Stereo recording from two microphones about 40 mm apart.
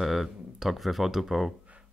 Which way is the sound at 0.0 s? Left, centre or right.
Centre.